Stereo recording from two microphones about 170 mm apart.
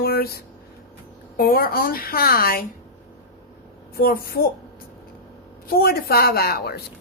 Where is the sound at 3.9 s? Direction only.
60° left (ahead or behind).